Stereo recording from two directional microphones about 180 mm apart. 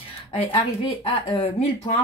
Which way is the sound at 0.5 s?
30° left (ahead or behind).